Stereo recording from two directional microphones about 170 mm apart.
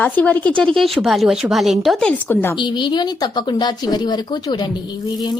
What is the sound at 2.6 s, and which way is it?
A woman's voice, 25° left (ahead or behind).